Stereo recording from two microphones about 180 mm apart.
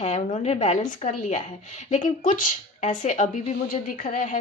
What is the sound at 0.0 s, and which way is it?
Speech, 35° left (ahead or behind).